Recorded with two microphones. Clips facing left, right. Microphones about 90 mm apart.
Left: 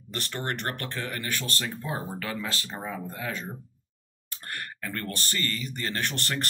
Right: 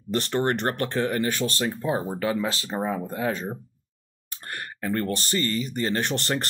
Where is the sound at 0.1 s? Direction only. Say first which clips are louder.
Right 9 dB; 30° right (ahead or behind).